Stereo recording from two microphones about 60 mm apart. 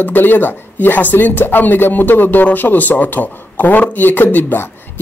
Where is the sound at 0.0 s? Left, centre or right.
Left.